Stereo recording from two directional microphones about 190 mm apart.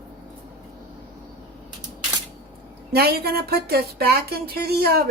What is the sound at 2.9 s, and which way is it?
Speech, 55° right (ahead or behind).